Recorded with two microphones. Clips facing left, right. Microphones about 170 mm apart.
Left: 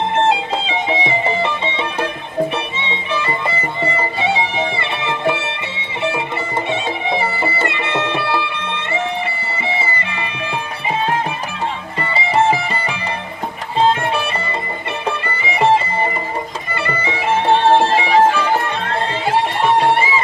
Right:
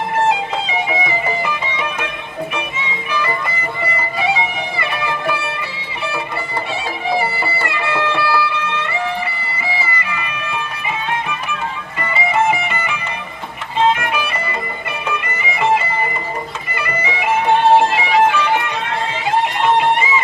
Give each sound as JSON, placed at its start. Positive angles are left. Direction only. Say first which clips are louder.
{"t": 0.3, "sound": "music", "louder": "left 1 dB", "side_deg": 30}